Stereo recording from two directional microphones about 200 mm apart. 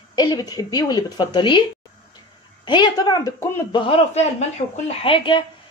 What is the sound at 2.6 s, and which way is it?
Speech, 20° left (ahead or behind).